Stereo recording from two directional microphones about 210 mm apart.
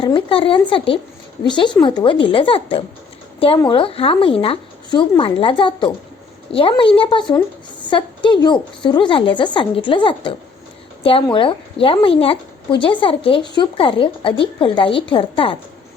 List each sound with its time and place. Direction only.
0.0 s speech: 25° left (ahead or behind)